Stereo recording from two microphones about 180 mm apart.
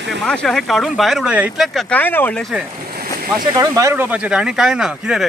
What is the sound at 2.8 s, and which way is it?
Boat, 55° right (ahead or behind).